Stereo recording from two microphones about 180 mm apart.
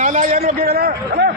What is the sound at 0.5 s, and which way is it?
Speech, 60° right (ahead or behind).